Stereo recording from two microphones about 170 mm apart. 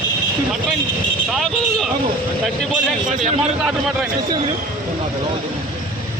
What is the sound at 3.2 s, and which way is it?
Speech, 5° right (ahead or behind).